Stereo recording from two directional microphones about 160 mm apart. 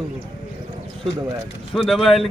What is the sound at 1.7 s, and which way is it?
Speech, centre (ahead or behind).